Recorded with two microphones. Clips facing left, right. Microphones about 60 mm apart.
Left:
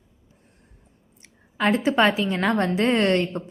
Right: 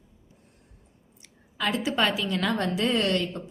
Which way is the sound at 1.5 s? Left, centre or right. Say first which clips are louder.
Left 6 dB; left.